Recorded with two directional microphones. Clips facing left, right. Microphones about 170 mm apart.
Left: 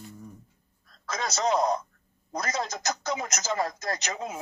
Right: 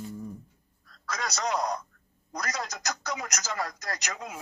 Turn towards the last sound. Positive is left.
turn(degrees=25)  # may be behind; listen again after turning